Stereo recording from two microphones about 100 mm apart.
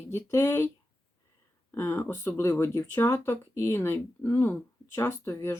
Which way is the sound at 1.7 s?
25° left (ahead or behind).